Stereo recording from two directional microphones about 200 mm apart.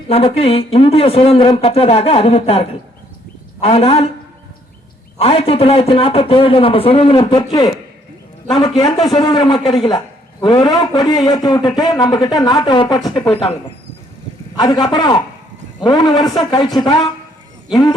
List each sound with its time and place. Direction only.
0.1 s speech: 30° left (ahead or behind)
5.2 s speech: 30° left (ahead or behind)
8.8 s speech: 20° left (ahead or behind)